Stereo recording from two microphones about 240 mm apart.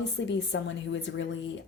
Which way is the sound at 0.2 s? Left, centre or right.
Left.